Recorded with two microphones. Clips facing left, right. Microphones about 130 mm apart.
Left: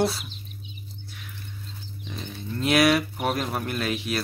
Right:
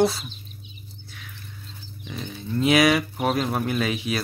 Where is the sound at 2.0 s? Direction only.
Centre (ahead or behind).